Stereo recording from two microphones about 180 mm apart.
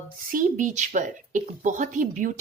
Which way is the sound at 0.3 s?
50° right (ahead or behind).